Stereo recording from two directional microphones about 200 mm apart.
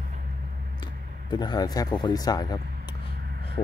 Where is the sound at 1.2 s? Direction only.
20° left (ahead or behind).